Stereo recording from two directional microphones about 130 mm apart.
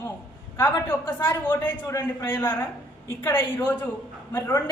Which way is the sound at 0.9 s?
15° left (ahead or behind).